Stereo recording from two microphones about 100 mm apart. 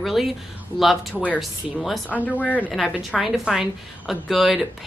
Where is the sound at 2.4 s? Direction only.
15° left (ahead or behind).